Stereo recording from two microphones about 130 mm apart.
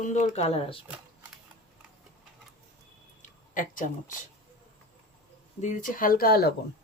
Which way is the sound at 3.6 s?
90° left.